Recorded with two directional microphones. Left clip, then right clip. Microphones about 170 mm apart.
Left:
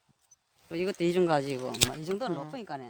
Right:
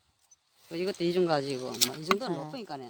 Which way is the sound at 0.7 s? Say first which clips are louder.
Left 1 dB; 55° left (ahead or behind).